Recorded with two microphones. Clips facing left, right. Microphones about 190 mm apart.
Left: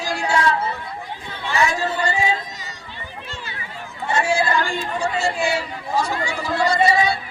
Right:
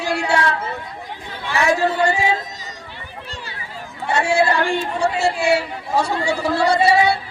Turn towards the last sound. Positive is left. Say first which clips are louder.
# right 3 dB
turn(degrees=-70)  # may be behind; listen again after turning